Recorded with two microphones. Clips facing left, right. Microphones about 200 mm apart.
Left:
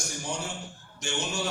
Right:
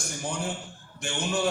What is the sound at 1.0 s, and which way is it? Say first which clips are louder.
Speech: even; 55° right (ahead or behind).